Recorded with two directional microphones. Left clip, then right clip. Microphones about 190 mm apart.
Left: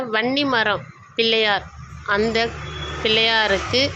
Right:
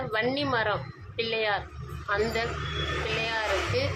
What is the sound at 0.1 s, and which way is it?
A woman's voice, 25° left (ahead or behind).